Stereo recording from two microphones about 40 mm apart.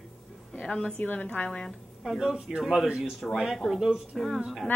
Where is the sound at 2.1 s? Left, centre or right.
Centre.